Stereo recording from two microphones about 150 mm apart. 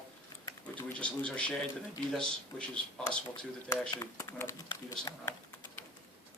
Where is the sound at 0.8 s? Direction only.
10° left (ahead or behind).